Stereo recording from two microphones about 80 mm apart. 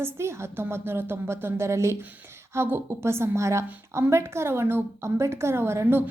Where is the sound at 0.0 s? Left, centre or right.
Right.